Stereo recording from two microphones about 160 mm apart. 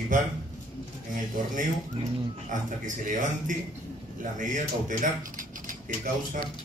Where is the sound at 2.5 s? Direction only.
55° right (ahead or behind).